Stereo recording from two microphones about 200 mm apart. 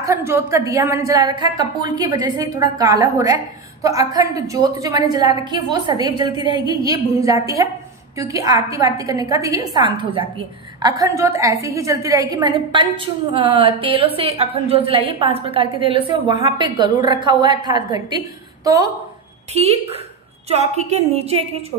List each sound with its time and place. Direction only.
0.0 s a woman's voice: 15° right (ahead or behind)
6.3 s a woman's voice: 25° left (ahead or behind)
6.7 s a woman's voice: 15° right (ahead or behind)
19.5 s a woman's voice: 30° right (ahead or behind)